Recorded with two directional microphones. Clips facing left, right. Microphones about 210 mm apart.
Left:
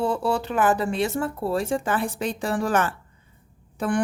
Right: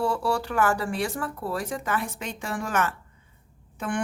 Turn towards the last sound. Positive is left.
turn(degrees=35)  # may be behind; listen again after turning